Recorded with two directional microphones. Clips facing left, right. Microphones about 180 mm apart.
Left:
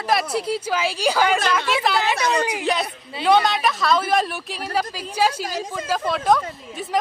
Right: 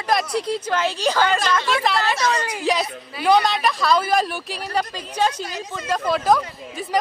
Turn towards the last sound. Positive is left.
turn(degrees=0)  # may be behind; listen again after turning